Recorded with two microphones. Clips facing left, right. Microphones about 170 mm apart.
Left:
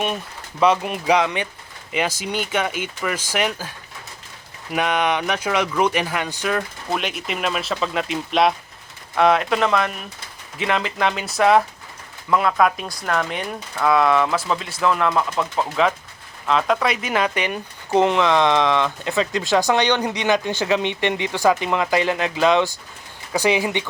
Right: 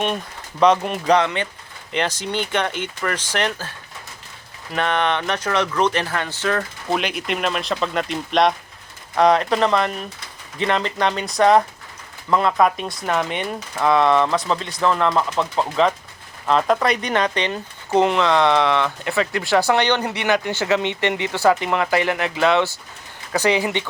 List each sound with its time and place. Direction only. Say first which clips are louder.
0.6 s speech: right 2 dB; 5° left (ahead or behind)
4.7 s speech: even; 10° left (ahead or behind)
6.9 s speech: right 3 dB; centre (ahead or behind)